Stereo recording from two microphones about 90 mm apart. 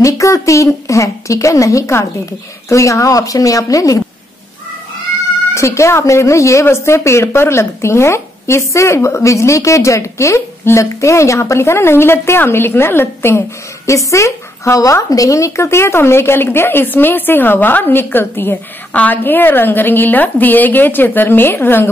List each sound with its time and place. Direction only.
0.0 s speech: 35° left (ahead or behind)
5.5 s speech: 30° left (ahead or behind)